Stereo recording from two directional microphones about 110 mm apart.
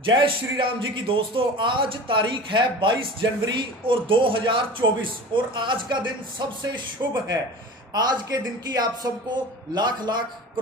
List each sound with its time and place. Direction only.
0.0 s a man's voice: 50° right (ahead or behind)
7.9 s a man's voice: 40° right (ahead or behind)